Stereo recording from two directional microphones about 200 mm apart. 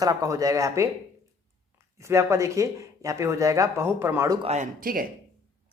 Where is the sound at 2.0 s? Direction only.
15° right (ahead or behind).